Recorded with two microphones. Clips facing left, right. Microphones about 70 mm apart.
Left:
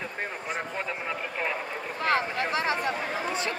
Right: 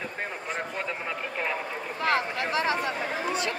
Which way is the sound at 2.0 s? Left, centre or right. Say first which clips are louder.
Even; left.